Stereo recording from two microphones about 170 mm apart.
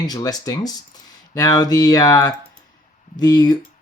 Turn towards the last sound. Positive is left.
turn(degrees=25)  # may be behind; listen again after turning